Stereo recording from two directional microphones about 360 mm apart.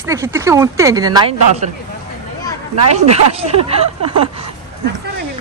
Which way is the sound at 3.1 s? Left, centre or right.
Centre.